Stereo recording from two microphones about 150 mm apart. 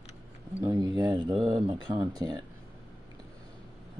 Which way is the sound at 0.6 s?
25° right (ahead or behind).